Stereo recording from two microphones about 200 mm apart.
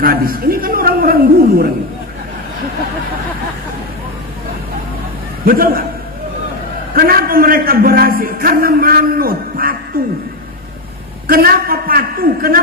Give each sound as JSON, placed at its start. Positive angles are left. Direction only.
{"t": 0.0, "sound": "a man's voice", "side_deg": -45}
{"t": 5.5, "sound": "a man's voice", "side_deg": -45}
{"t": 6.9, "sound": "a man's voice", "side_deg": -50}
{"t": 11.3, "sound": "a man's voice", "side_deg": -50}